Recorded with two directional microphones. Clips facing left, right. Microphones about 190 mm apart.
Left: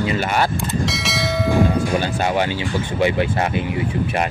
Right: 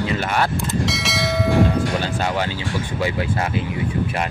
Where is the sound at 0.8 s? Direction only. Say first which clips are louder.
Even; centre (ahead or behind).